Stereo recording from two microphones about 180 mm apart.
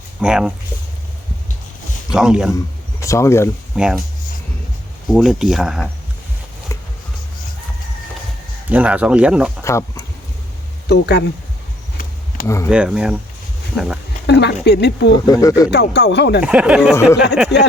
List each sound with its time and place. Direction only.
0.2 s speech: 5° right (ahead or behind)
2.0 s speech: 5° right (ahead or behind)
2.6 s speech: 20° left (ahead or behind)
3.8 s speech: 5° right (ahead or behind)
5.0 s speech: centre (ahead or behind)
8.7 s speech: 10° right (ahead or behind)
9.6 s speech: 15° left (ahead or behind)
10.8 s speech: 65° left (ahead or behind)
12.6 s speech: 5° right (ahead or behind)
14.3 s speech: 70° left (ahead or behind)
15.1 s speech: 20° left (ahead or behind)
15.7 s speech: 65° left (ahead or behind)
16.4 s speech: 5° right (ahead or behind)
17.5 s speech: 70° left (ahead or behind)